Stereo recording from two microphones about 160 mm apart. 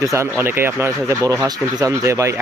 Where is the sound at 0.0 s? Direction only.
20° right (ahead or behind).